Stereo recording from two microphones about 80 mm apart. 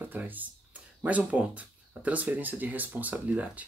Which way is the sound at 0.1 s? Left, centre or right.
Right.